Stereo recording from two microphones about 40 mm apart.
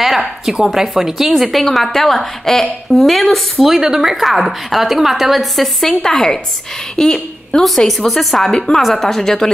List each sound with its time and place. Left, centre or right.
0.0 s a sound: centre
0.7 s a woman's voice: centre
3.6 s a woman's voice: centre
6.0 s a woman's voice: centre
7.6 s a woman's voice: centre
8.5 s speech: centre
8.8 s speech: centre